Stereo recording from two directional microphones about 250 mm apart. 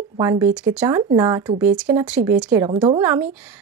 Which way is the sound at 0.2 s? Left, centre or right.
Centre.